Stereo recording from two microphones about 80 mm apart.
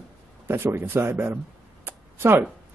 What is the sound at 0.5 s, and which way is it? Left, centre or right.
Speech, right.